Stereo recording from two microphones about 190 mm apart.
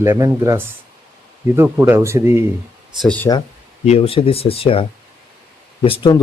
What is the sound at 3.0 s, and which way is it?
Speech, 5° left (ahead or behind).